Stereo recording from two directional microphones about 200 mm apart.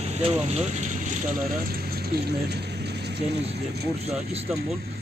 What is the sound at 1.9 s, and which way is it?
Mechanisms, 50° right (ahead or behind).